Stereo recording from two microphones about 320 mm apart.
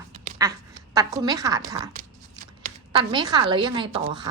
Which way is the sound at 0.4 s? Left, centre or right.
Centre.